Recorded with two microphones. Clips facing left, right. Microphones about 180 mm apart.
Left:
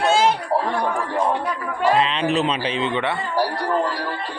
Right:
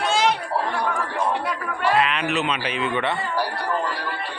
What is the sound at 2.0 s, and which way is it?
Speech, 30° left (ahead or behind).